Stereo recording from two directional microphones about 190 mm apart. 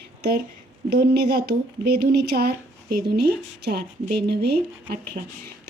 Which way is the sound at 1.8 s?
55° right (ahead or behind).